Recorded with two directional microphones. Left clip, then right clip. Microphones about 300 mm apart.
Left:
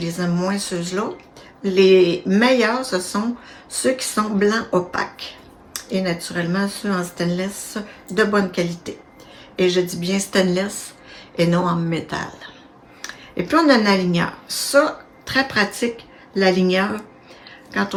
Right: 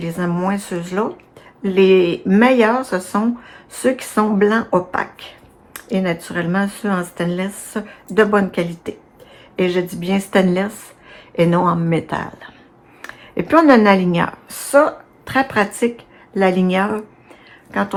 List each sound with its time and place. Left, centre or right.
0.0 s speech: centre
5.7 s a sound: centre
6.2 s speech: centre